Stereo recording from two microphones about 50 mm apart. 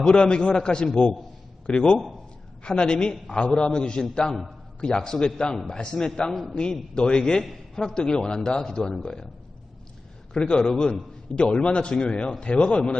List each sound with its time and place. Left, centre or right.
0.1 s a man's voice: centre
10.4 s a man's voice: centre